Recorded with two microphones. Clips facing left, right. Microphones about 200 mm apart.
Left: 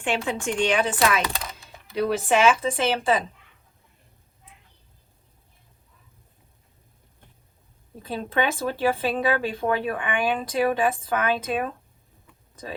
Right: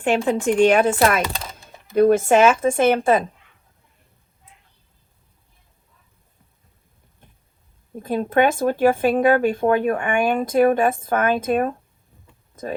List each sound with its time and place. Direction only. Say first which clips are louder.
0.3 s speech: right 10 dB; 45° right (ahead or behind)
7.9 s speech: right 7 dB; 50° right (ahead or behind)